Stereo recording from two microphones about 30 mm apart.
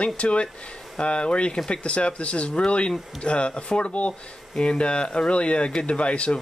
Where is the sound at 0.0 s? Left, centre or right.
Left.